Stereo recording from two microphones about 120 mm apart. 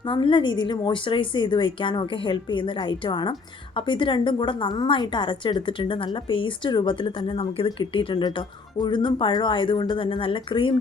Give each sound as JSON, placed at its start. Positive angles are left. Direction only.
{"t": 0.1, "sound": "a woman's voice", "side_deg": 45}